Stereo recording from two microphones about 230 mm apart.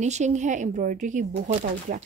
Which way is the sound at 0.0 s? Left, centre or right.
Right.